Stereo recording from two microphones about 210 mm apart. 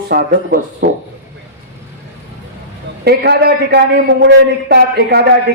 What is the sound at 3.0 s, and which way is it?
A man's voice, 50° right (ahead or behind).